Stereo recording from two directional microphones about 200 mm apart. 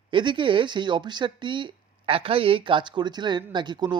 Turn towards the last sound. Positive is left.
turn(degrees=-20)  # may be behind; listen again after turning